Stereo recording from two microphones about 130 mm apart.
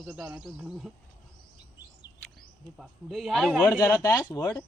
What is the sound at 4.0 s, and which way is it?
Speech, 25° left (ahead or behind).